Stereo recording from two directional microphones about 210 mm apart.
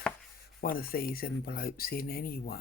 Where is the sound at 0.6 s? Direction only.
45° left (ahead or behind).